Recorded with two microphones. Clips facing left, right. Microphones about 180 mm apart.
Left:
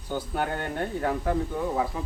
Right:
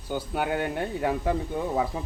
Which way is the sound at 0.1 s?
10° right (ahead or behind).